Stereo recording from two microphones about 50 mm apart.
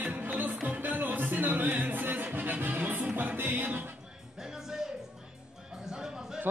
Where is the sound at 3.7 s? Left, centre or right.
Right.